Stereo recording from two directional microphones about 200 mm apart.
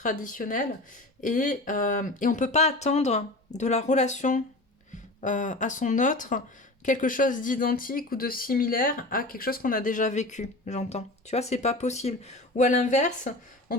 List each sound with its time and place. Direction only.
0.0 s speech: 40° left (ahead or behind)